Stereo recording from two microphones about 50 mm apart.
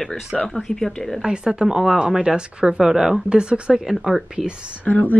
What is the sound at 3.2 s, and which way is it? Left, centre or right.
Speech, centre.